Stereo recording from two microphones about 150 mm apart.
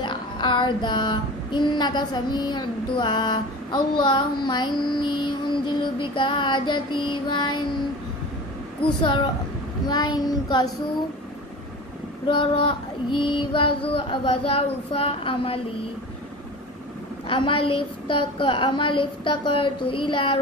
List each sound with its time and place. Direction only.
0.0 s child singing: 30° left (ahead or behind)
9.0 s child singing: 30° left (ahead or behind)
9.8 s a child's voice: 25° left (ahead or behind)
12.3 s child singing: 35° left (ahead or behind)
17.3 s child singing: 35° left (ahead or behind)